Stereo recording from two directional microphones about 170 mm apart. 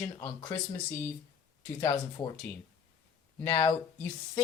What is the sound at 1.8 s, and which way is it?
Speech, 20° left (ahead or behind).